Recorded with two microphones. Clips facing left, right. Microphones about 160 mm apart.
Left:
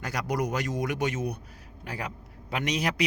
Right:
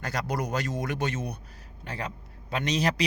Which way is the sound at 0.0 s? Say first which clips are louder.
Left 1 dB; 10° left (ahead or behind).